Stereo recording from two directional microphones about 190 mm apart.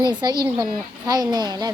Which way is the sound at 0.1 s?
25° right (ahead or behind).